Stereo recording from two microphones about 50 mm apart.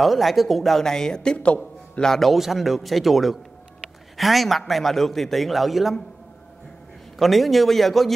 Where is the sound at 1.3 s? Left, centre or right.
Left.